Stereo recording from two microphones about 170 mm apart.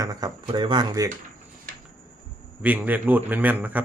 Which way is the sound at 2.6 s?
10° right (ahead or behind).